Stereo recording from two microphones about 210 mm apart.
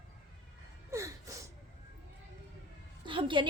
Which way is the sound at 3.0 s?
25° right (ahead or behind).